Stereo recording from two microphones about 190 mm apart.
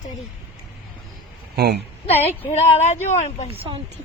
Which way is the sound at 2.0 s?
30° left (ahead or behind).